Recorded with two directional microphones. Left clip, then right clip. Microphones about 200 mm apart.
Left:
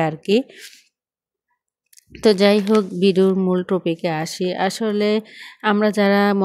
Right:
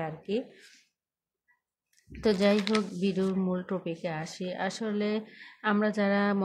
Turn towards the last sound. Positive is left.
turn(degrees=45)  # may be behind; listen again after turning